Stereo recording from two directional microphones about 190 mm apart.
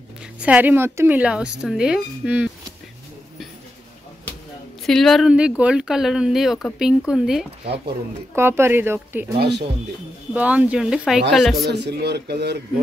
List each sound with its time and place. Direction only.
0.4 s speech: 10° right (ahead or behind)
4.8 s speech: centre (ahead or behind)
9.4 s speech: 60° right (ahead or behind)
10.3 s speech: 5° right (ahead or behind)
11.7 s speech: 60° right (ahead or behind)